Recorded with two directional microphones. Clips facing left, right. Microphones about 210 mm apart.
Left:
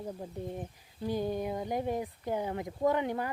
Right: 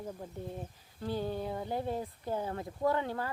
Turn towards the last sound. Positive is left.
turn(degrees=15)  # may be behind; listen again after turning